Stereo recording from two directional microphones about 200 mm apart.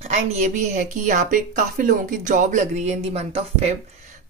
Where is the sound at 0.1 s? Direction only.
35° right (ahead or behind).